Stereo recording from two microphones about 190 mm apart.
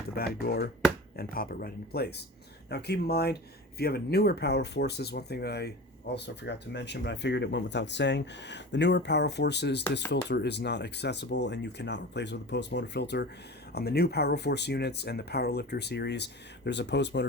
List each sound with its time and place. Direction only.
0.3 s speech: 55° left (ahead or behind)